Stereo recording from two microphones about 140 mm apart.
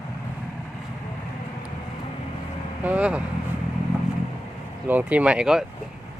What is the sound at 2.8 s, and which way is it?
Vehicle, 10° right (ahead or behind).